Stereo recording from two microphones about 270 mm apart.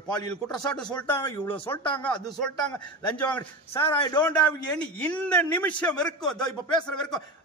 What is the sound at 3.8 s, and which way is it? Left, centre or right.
Speech, centre.